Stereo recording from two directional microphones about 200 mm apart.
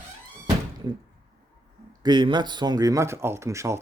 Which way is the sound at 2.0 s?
20° right (ahead or behind).